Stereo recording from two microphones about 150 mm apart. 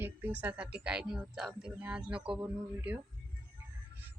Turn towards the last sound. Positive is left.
turn(degrees=-15)  # may be behind; listen again after turning